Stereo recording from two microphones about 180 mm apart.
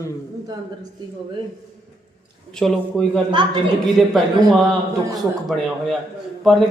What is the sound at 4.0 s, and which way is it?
Speech, centre (ahead or behind).